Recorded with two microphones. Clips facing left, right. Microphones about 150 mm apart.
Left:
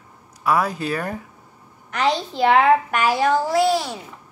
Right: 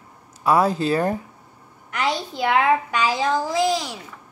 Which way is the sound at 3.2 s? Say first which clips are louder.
Left 5 dB; 15° right (ahead or behind).